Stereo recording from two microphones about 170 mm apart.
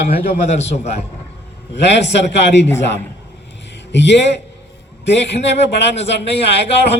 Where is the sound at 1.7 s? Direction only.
90° left.